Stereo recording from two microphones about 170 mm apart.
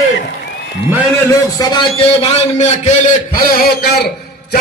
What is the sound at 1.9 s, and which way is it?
Speech, 35° left (ahead or behind).